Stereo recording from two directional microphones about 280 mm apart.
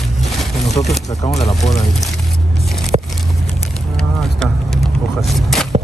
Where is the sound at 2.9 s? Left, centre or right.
Right.